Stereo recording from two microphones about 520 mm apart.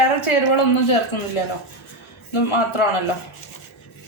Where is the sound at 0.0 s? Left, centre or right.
Left.